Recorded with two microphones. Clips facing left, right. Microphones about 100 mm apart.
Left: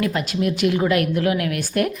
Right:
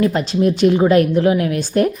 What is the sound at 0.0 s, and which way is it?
A woman's voice, 30° right (ahead or behind).